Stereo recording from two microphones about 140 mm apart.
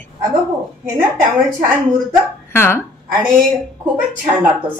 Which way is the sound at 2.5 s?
15° left (ahead or behind).